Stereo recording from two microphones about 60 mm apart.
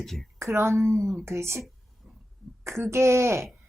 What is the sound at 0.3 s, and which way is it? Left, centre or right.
A woman's voice, right.